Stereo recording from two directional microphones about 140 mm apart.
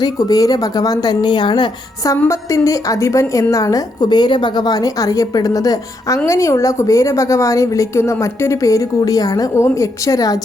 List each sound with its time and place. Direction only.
0.0 s a woman's voice: 25° left (ahead or behind)
2.1 s a woman's voice: 20° left (ahead or behind)